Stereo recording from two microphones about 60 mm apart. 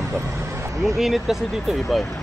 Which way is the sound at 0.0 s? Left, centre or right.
Right.